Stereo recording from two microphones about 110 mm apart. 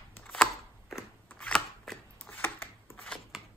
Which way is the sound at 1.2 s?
10° left (ahead or behind).